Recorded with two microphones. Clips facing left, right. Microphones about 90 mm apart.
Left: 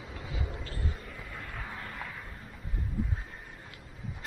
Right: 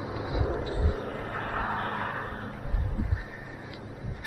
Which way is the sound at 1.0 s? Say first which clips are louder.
Right 10 dB; 45° right (ahead or behind).